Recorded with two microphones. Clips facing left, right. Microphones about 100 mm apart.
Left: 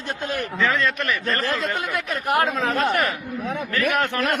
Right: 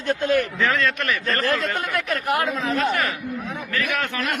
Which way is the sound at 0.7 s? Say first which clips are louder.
Even; centre (ahead or behind).